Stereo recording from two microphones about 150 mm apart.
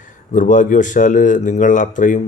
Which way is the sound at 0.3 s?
60° left (ahead or behind).